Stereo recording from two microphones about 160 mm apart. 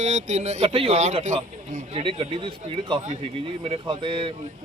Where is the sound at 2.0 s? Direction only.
35° right (ahead or behind).